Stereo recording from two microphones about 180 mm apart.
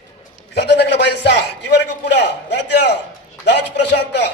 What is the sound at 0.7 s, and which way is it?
A man's voice, 70° left (ahead or behind).